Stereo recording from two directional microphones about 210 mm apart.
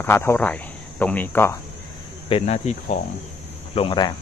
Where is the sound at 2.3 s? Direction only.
30° left (ahead or behind).